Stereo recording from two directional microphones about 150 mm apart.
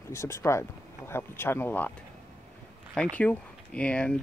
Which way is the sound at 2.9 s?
10° left (ahead or behind).